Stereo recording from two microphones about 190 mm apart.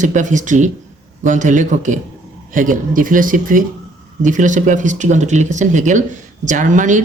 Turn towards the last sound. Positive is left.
turn(degrees=-40)  # may be behind; listen again after turning